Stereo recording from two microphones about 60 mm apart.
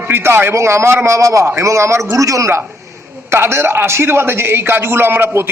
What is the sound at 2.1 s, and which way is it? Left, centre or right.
Speech, right.